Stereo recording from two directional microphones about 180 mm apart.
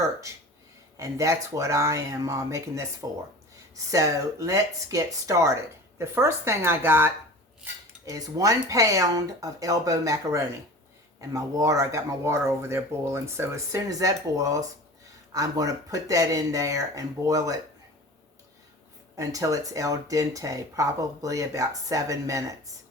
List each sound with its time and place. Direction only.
0.9 s speech: 15° right (ahead or behind)
19.1 s speech: 20° right (ahead or behind)